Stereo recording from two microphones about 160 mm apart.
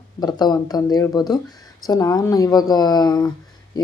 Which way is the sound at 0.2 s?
25° left (ahead or behind).